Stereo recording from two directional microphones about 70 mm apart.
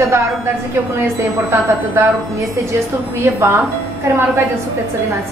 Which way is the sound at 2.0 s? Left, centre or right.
Right.